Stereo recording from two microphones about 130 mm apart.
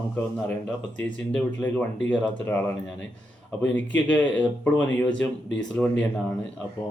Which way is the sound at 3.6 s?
10° left (ahead or behind).